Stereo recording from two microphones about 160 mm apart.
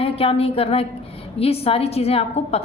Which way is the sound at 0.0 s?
35° left (ahead or behind).